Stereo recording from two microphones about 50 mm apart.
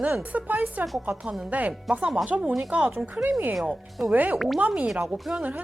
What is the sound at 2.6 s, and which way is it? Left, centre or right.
Speech, right.